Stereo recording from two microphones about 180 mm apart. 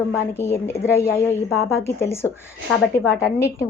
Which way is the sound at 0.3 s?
15° left (ahead or behind).